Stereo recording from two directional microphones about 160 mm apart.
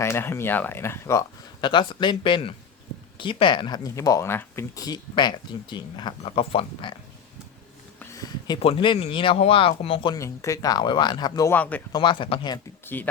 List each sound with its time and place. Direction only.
0.0 s speech: 15° left (ahead or behind)
1.6 s speech: 30° left (ahead or behind)
8.1 s a sound: 20° left (ahead or behind)
8.5 s speech: 35° left (ahead or behind)
10.2 s speech: 20° left (ahead or behind)
11.5 s speech: 10° left (ahead or behind)
11.9 s speech: 30° left (ahead or behind)
12.8 s a sound: 10° left (ahead or behind)